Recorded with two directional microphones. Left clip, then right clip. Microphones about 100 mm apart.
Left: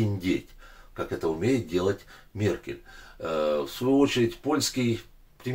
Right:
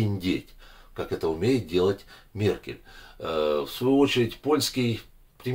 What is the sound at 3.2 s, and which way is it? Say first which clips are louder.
Speech: right 1 dB; 25° right (ahead or behind).